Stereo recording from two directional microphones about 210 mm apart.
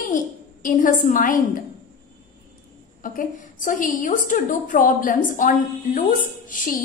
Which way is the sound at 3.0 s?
40° left (ahead or behind).